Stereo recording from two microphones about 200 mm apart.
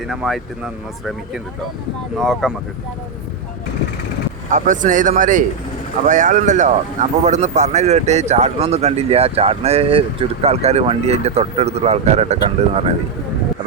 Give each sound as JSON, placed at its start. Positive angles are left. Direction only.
{"t": 0.1, "sound": "speech", "side_deg": -5}
{"t": 2.1, "sound": "speech", "side_deg": 0}
{"t": 4.5, "sound": "speech", "side_deg": -40}